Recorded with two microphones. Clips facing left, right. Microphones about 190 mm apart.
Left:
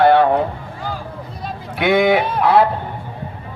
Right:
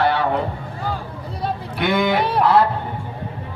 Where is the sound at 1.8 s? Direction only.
60° left (ahead or behind).